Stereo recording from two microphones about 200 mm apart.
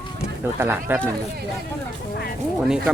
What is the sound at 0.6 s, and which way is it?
Speech, 10° right (ahead or behind).